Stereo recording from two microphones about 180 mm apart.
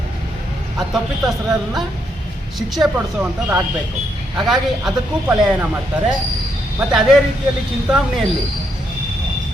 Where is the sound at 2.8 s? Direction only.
10° right (ahead or behind).